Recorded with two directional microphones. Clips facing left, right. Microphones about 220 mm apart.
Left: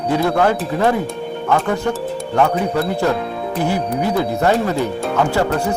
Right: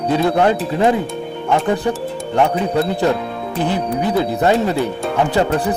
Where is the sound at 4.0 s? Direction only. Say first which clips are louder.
Right 1 dB; 20° right (ahead or behind).